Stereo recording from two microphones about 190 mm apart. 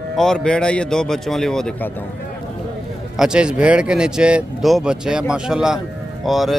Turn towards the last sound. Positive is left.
turn(degrees=0)  # may be behind; listen again after turning